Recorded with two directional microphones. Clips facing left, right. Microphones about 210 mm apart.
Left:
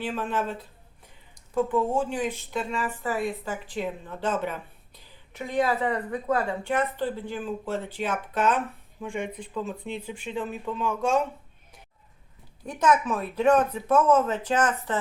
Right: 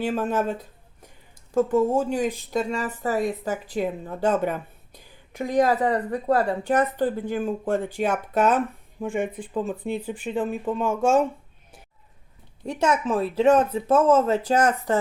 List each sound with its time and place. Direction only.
0.0 s a woman's voice: 45° right (ahead or behind)
12.6 s speech: 25° right (ahead or behind)